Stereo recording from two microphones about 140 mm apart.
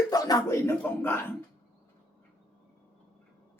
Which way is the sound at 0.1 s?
25° left (ahead or behind).